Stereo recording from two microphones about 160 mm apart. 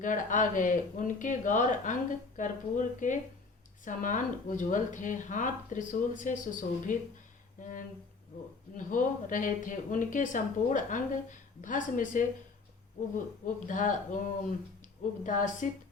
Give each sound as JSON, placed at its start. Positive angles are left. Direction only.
{"t": 0.0, "sound": "speech", "side_deg": 50}
{"t": 15.2, "sound": "speech", "side_deg": 55}